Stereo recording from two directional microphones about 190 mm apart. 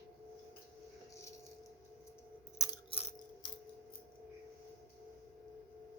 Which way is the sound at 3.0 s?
35° left (ahead or behind).